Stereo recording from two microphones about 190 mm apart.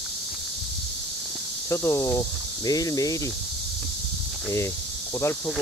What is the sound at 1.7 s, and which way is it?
Speech, 15° left (ahead or behind).